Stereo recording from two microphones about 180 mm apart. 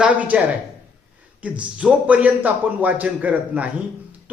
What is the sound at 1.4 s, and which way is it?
Speech, 5° right (ahead or behind).